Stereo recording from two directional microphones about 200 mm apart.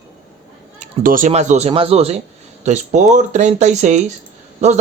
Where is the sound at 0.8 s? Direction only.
40° right (ahead or behind).